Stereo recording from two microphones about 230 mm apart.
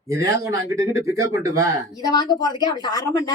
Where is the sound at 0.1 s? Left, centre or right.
Centre.